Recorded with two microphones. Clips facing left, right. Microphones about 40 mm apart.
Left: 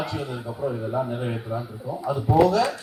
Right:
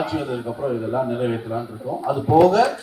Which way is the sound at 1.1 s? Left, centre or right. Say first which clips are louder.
Right 6 dB; right.